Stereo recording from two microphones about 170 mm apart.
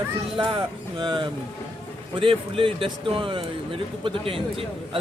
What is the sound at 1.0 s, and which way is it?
Speech, 30° right (ahead or behind).